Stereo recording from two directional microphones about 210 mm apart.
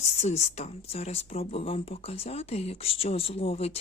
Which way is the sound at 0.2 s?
30° left (ahead or behind).